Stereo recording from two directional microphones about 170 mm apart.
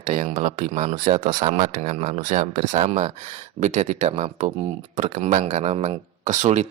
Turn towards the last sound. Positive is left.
turn(degrees=-45)  # may be behind; listen again after turning